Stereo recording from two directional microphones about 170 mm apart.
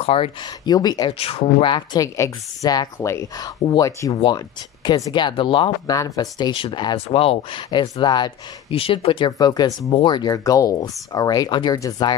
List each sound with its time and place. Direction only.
0.0 s speech: 35° left (ahead or behind)